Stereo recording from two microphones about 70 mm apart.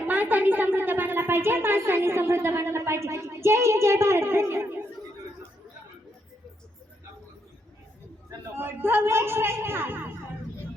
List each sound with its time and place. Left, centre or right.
0.1 s a woman's voice: right
8.5 s a man's voice: right